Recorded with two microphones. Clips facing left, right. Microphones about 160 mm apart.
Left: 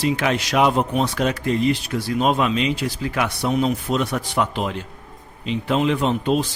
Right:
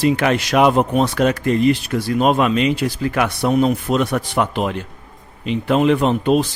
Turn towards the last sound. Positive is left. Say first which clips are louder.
# right 4 dB
turn(degrees=-60)  # may be behind; listen again after turning